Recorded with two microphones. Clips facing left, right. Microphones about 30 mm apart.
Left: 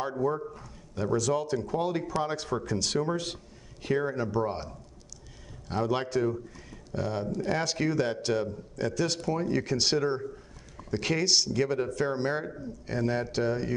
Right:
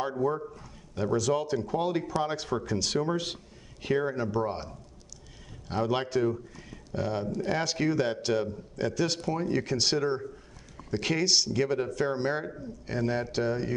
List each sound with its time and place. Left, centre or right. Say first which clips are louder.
0.0 s a man's voice: even; centre